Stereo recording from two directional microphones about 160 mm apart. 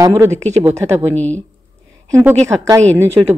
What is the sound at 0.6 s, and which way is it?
Speech, 20° right (ahead or behind).